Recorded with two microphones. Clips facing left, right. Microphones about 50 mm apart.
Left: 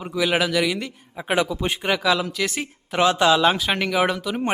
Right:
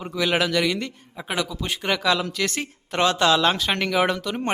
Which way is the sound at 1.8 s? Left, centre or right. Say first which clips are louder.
Even; centre.